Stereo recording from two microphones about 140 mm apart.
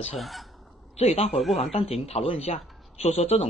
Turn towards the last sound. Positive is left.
turn(degrees=50)  # may be behind; listen again after turning